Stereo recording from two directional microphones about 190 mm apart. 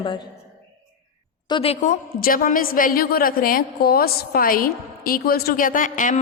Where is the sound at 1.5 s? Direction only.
30° left (ahead or behind).